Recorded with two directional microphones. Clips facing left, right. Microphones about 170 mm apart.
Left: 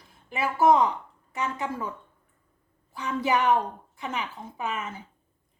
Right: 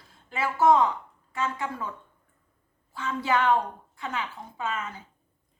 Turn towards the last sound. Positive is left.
turn(degrees=20)  # may be behind; listen again after turning